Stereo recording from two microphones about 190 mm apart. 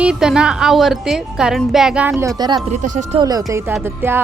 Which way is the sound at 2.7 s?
40° right (ahead or behind).